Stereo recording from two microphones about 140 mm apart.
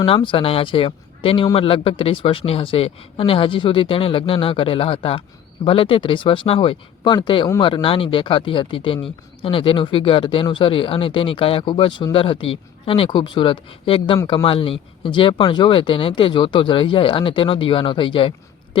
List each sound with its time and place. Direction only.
0.0 s speech: 35° left (ahead or behind)